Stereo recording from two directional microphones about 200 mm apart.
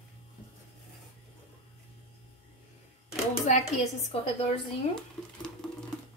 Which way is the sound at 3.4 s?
35° left (ahead or behind).